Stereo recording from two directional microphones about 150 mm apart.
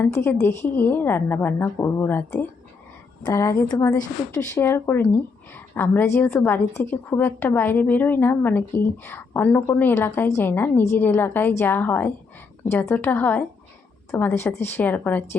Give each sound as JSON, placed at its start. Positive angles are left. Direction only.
{"t": 0.0, "sound": "a woman's voice", "side_deg": 15}